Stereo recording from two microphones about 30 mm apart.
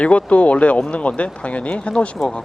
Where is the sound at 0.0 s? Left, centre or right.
Left.